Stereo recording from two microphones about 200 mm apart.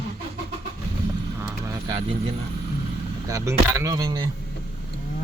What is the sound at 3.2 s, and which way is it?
Speech, 15° right (ahead or behind).